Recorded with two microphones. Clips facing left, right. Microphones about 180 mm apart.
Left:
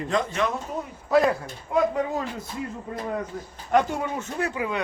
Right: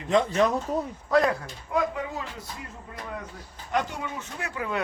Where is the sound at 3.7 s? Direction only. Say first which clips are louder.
Left 6 dB; 50° left (ahead or behind).